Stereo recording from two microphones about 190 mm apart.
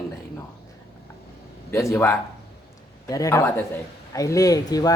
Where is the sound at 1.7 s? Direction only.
15° left (ahead or behind).